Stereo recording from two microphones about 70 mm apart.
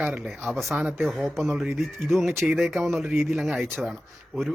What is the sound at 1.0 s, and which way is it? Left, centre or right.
Speech, centre.